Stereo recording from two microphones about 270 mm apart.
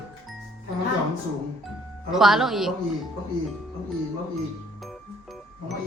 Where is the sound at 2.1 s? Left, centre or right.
Centre.